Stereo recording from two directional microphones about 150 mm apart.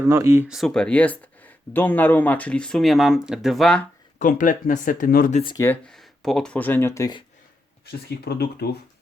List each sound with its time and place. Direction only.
0.0 s speech: 20° right (ahead or behind)
0.4 s speech: centre (ahead or behind)
4.2 s speech: 60° left (ahead or behind)
5.3 s speech: 35° left (ahead or behind)
5.8 s speech: centre (ahead or behind); by 7.2 s 20° left (ahead or behind)
7.9 s speech: 90° left